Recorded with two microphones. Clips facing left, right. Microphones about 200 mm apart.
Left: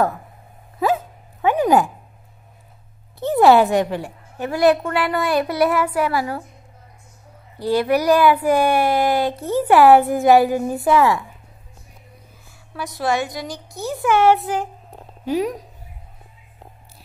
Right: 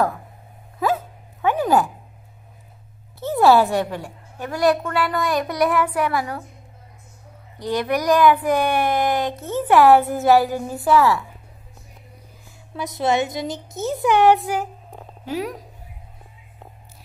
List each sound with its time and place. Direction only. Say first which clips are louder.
0.9 s dog: left 2 dB; 15° left (ahead or behind)
3.2 s a woman's voice: left 2 dB; 15° left (ahead or behind)
7.5 s a woman's voice: left 4 dB; 5° left (ahead or behind)
12.7 s a child's voice: right 1 dB; 20° right (ahead or behind)
15.2 s a woman's voice: left 5 dB; 15° left (ahead or behind)